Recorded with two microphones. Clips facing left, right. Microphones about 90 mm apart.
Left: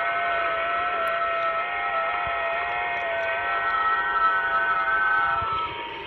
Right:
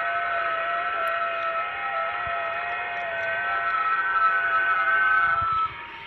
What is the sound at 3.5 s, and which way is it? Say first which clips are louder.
Civil defense siren: even; 35° left (ahead or behind).